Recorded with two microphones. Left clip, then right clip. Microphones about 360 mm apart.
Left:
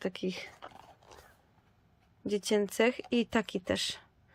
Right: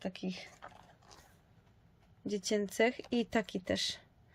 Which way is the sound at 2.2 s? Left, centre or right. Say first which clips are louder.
Left 5 dB; centre.